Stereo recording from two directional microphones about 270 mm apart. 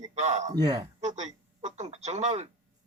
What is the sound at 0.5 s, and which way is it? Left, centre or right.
Speech, centre.